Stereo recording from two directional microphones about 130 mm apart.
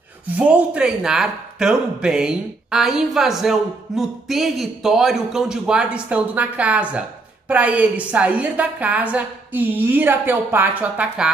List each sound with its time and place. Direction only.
0.4 s a woman's voice: 10° right (ahead or behind)